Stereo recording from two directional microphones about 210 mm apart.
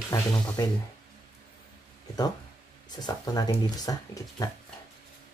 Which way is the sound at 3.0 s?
20° left (ahead or behind).